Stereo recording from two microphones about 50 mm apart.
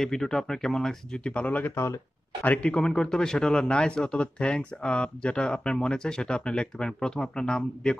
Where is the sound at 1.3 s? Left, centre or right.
Left.